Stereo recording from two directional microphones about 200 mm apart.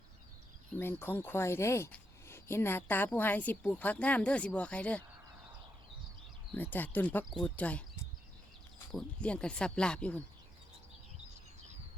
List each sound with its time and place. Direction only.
0.8 s speech: 10° left (ahead or behind)
6.5 s speech: 10° left (ahead or behind)